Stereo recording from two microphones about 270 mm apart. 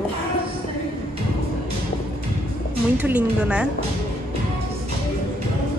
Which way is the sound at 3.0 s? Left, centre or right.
Centre.